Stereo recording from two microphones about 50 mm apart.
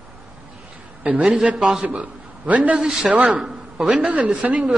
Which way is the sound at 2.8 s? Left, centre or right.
Centre.